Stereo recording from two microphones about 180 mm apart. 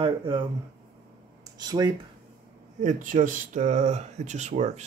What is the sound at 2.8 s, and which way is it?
Speech, 45° right (ahead or behind).